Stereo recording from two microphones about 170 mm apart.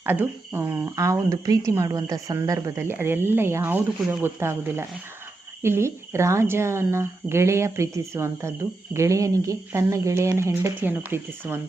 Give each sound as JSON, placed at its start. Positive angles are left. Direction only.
{"t": 0.0, "sound": "speech", "side_deg": -15}